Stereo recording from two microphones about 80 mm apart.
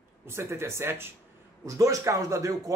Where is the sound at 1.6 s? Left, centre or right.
Right.